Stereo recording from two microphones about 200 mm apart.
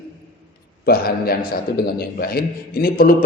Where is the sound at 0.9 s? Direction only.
50° left (ahead or behind).